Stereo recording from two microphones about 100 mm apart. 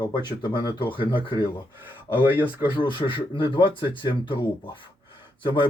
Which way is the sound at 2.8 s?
55° left (ahead or behind).